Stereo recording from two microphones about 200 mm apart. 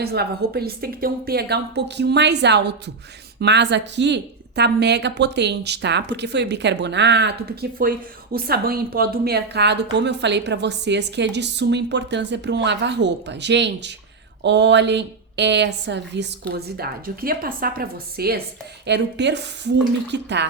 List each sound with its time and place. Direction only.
0.0 s a woman's voice: 50° right (ahead or behind)